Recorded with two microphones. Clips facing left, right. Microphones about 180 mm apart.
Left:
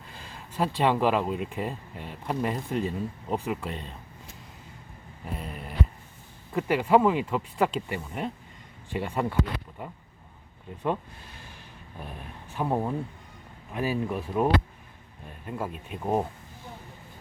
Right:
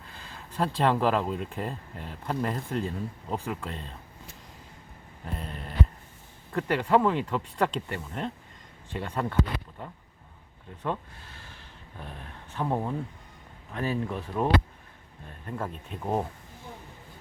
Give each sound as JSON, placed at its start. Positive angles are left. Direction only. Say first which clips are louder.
{"t": 0.5, "sound": "speech", "louder": "left 1 dB", "side_deg": 5}
{"t": 5.2, "sound": "speech", "louder": "left 1 dB", "side_deg": 5}